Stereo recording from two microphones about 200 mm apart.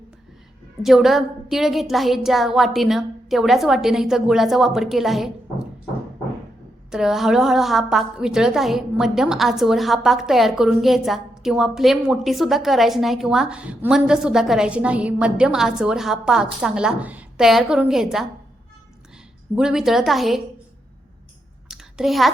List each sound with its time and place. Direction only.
0.8 s a woman's voice: centre (ahead or behind)
6.9 s a woman's voice: centre (ahead or behind)
19.5 s a woman's voice: centre (ahead or behind)
21.7 s a sound: centre (ahead or behind)